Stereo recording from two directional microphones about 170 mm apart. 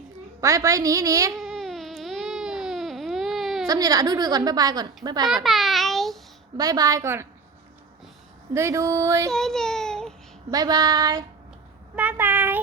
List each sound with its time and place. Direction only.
0.4 s a woman's voice: 20° right (ahead or behind)
1.4 s baby cry: centre (ahead or behind)
3.7 s a woman's voice: 20° right (ahead or behind)
5.3 s babbling: centre (ahead or behind)
6.6 s a woman's voice: 20° right (ahead or behind)
8.5 s a sound: 15° right (ahead or behind)
9.3 s baby cry: 5° left (ahead or behind)
10.5 s a woman's voice: 20° right (ahead or behind)
11.9 s child singing: 10° right (ahead or behind)